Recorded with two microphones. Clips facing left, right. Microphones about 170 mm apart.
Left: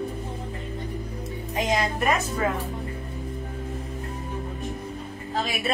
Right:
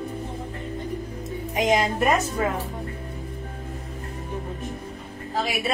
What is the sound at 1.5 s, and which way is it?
Music, 20° right (ahead or behind).